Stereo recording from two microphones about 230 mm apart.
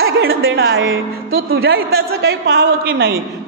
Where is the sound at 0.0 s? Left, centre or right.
Right.